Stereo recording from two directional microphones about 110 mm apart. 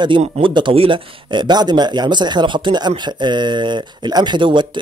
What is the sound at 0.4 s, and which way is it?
Speech, 50° right (ahead or behind).